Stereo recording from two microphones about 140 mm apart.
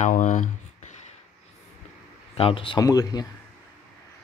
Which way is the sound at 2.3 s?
40° left (ahead or behind).